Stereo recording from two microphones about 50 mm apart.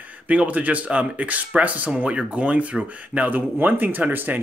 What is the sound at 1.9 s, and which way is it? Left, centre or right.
Speech, right.